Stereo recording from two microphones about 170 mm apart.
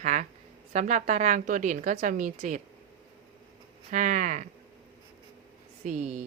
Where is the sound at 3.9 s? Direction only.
50° right (ahead or behind).